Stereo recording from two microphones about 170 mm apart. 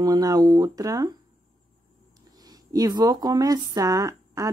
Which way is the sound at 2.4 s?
25° right (ahead or behind).